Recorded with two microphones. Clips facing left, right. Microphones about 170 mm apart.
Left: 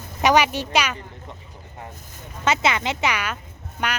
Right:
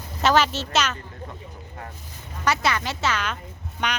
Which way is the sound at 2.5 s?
20° left (ahead or behind).